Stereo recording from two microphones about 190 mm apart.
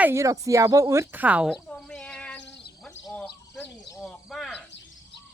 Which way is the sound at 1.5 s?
5° left (ahead or behind).